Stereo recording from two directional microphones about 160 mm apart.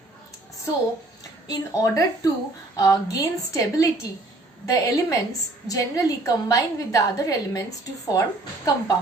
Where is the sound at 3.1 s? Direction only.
20° left (ahead or behind).